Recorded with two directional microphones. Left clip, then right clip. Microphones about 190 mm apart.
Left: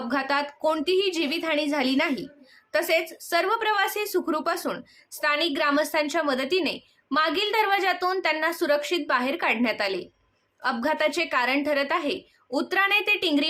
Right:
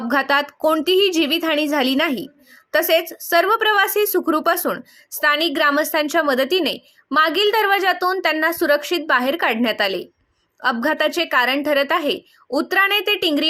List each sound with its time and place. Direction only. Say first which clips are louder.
0.1 s speech: right 8 dB; 40° right (ahead or behind)